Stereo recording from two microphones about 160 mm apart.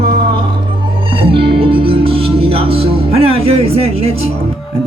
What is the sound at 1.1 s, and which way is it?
Music, 35° right (ahead or behind).